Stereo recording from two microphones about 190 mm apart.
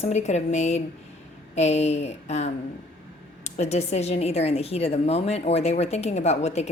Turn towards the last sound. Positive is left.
turn(degrees=35)  # may be behind; listen again after turning